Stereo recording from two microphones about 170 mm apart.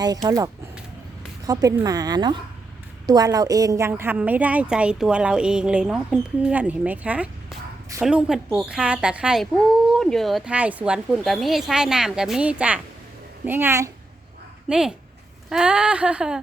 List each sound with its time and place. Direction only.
0.0 s a woman's voice: 20° right (ahead or behind)
14.7 s a woman's voice: 5° right (ahead or behind)